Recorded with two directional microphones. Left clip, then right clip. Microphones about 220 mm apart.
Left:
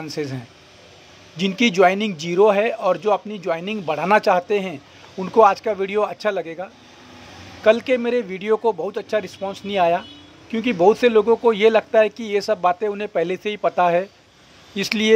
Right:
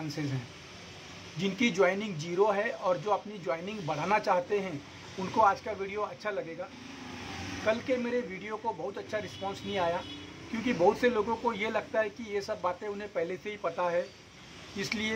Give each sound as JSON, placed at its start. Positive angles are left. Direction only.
{"t": 0.2, "sound": "speech", "side_deg": 40}
{"t": 1.4, "sound": "speech", "side_deg": 40}